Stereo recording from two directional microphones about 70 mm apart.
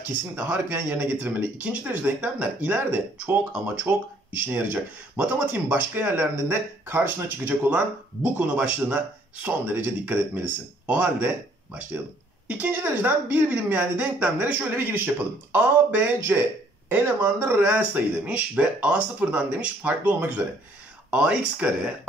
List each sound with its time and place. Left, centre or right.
0.4 s speech: right
1.6 s speech: centre; by 7.0 s right
7.2 s speech: right
12.4 s speech: right